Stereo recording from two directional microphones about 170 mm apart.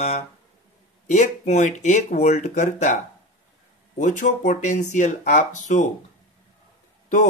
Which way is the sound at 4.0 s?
50° left (ahead or behind).